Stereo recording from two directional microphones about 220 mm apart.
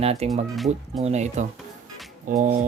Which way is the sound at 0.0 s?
30° right (ahead or behind).